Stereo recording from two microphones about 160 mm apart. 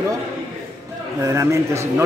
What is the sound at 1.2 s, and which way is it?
Speech, 20° right (ahead or behind).